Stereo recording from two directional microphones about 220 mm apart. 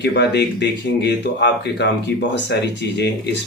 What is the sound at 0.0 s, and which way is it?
Speech, 50° left (ahead or behind).